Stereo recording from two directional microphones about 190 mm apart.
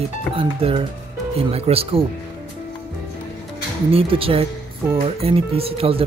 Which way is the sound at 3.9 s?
30° right (ahead or behind).